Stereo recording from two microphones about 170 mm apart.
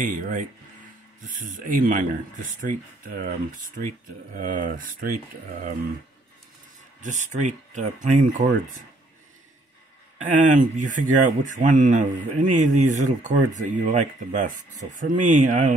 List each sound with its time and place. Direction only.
0.0 s speech: 50° right (ahead or behind)
7.0 s speech: 45° right (ahead or behind)
10.1 s speech: 50° right (ahead or behind)